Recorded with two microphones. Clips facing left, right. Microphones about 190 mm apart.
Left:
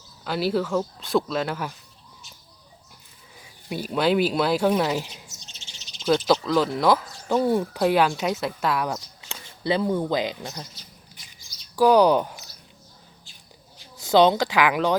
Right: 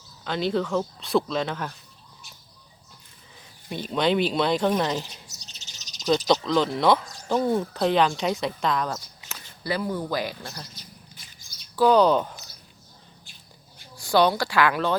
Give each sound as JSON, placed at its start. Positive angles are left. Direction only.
{"t": 0.3, "sound": "speech", "side_deg": 5}
{"t": 3.3, "sound": "speech", "side_deg": 5}
{"t": 5.3, "sound": "bird", "side_deg": -40}
{"t": 6.1, "sound": "speech", "side_deg": 5}
{"t": 9.3, "sound": "speech", "side_deg": 25}
{"t": 11.3, "sound": "chirp", "side_deg": -50}
{"t": 11.8, "sound": "speech", "side_deg": 10}
{"t": 13.9, "sound": "speech", "side_deg": 20}